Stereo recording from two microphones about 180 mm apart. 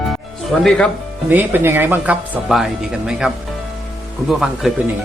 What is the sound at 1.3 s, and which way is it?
A man's voice, 10° right (ahead or behind).